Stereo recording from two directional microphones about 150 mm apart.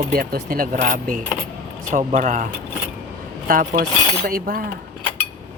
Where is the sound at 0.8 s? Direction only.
60° right (ahead or behind).